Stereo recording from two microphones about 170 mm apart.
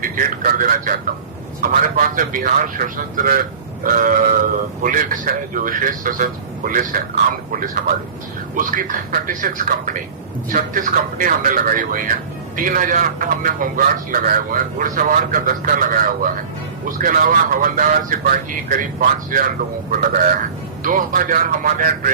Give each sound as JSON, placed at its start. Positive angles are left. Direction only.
{"t": 0.0, "sound": "a man's voice", "side_deg": -55}
{"t": 8.5, "sound": "a man's voice", "side_deg": -50}